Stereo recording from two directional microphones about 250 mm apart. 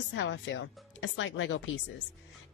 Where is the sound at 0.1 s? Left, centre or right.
Left.